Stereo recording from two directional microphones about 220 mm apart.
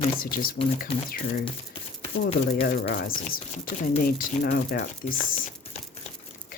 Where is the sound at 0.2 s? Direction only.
40° left (ahead or behind).